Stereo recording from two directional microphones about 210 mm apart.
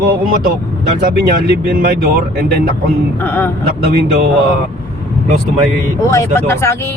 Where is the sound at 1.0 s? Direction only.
45° right (ahead or behind).